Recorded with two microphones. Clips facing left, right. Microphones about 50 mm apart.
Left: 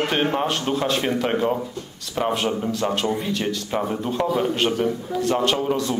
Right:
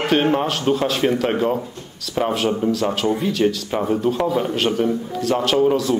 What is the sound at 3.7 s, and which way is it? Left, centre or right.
A man's voice, centre.